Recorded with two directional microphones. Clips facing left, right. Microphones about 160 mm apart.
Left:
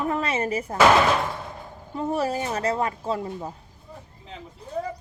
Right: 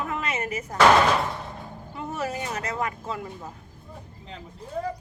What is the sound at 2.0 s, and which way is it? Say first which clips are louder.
Speech: left 6 dB; 35° left (ahead or behind).